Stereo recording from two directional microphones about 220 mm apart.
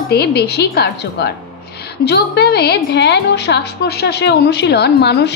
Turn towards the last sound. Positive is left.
turn(degrees=50)  # may be behind; listen again after turning